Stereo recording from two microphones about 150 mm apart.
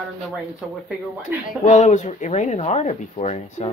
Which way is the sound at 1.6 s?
50° left (ahead or behind).